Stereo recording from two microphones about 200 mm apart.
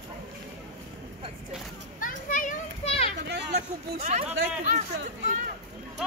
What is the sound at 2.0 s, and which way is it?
Children playing, 40° left (ahead or behind).